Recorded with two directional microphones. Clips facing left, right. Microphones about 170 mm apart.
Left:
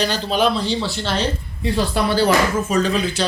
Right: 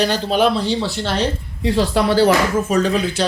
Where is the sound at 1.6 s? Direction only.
90° right; by 3.3 s 55° right (ahead or behind).